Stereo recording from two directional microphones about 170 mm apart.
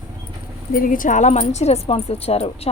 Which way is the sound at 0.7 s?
55° left (ahead or behind).